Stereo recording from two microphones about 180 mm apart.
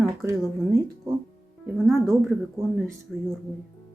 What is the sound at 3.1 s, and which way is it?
Speech, centre (ahead or behind).